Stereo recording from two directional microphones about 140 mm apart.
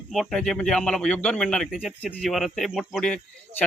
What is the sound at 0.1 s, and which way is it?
Speech, centre (ahead or behind).